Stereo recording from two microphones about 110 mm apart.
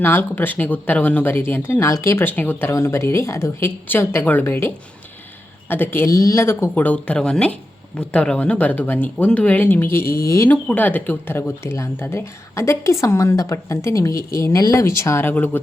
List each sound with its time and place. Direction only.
0.0 s speech: 20° left (ahead or behind)
6.1 s speech: 35° left (ahead or behind)
6.4 s speech: 20° left (ahead or behind)
10.5 s speech: 15° left (ahead or behind)